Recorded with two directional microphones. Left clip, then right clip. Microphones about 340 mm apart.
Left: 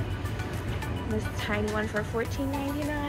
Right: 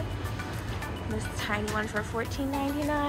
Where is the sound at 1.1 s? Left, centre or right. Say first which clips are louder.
Left 1 dB; centre.